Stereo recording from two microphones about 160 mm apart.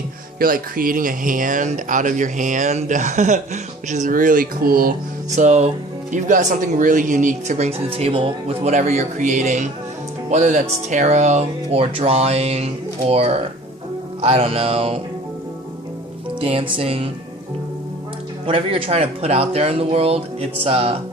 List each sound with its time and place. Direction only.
0.3 s speech: 65° right (ahead or behind)
5.3 s speech: 50° right (ahead or behind)
16.4 s speech: 35° right (ahead or behind)
18.4 s speech: 35° right (ahead or behind)